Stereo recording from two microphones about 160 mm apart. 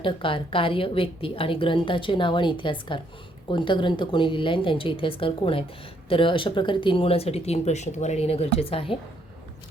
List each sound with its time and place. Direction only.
0.0 s a woman's voice: 30° left (ahead or behind)